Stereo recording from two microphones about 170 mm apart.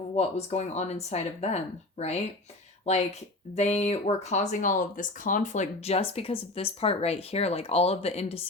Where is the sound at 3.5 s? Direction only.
40° left (ahead or behind).